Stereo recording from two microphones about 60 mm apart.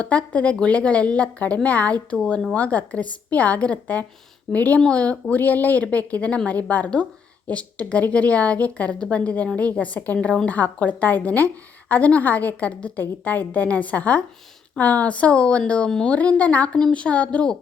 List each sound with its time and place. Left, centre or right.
0.0 s a woman's voice: left